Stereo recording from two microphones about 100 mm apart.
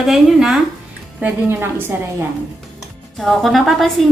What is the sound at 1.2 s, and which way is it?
Speech, 25° right (ahead or behind).